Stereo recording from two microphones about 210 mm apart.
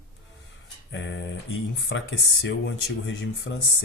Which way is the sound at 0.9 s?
60° left (ahead or behind).